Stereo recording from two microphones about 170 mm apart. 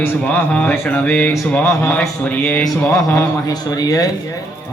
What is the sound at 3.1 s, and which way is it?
Speech, 20° left (ahead or behind).